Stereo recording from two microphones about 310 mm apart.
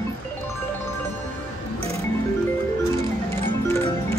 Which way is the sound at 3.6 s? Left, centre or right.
Centre.